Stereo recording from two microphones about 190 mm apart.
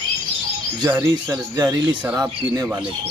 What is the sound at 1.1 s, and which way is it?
A man's voice, 20° right (ahead or behind).